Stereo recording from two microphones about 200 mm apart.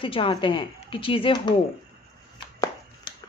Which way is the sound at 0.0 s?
25° left (ahead or behind).